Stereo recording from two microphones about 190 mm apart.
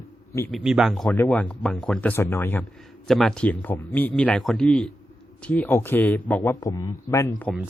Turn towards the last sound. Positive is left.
turn(degrees=15)  # may be behind; listen again after turning